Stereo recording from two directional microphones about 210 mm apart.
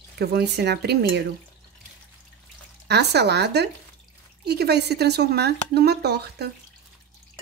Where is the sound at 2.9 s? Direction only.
50° right (ahead or behind).